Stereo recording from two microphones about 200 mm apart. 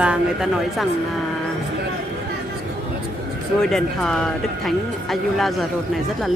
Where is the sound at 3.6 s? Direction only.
Centre (ahead or behind).